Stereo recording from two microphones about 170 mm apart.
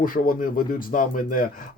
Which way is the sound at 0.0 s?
55° left (ahead or behind).